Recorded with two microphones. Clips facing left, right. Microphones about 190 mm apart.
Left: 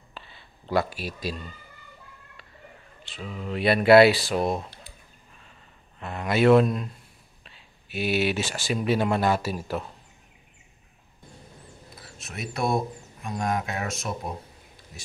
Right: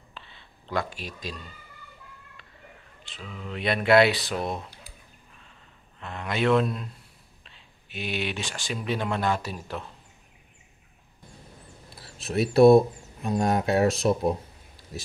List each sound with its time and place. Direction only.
0.1 s a sound: 5° left (ahead or behind)
3.2 s speech: 40° left (ahead or behind)
3.4 s speech: 5° left (ahead or behind)
5.9 s speech: 10° left (ahead or behind)
12.0 s speech: 35° right (ahead or behind)